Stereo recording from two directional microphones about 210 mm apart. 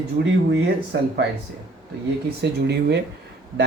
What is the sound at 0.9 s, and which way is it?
Speech, 55° right (ahead or behind).